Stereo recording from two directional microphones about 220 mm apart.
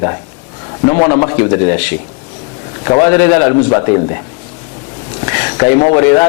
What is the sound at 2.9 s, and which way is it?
Speech, 25° left (ahead or behind).